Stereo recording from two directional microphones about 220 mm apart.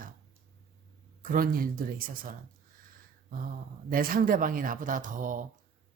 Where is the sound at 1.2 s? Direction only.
40° right (ahead or behind).